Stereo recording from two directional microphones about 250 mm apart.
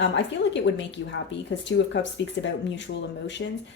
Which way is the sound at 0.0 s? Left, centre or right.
Left.